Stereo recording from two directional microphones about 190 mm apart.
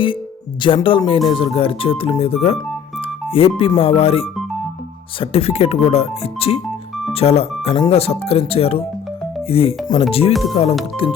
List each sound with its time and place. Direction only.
0.6 s speech: 25° left (ahead or behind)
3.0 s music: 30° left (ahead or behind)
3.6 s speech: 30° left (ahead or behind)